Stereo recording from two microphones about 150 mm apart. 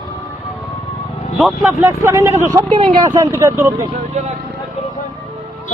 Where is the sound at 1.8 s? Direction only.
20° right (ahead or behind).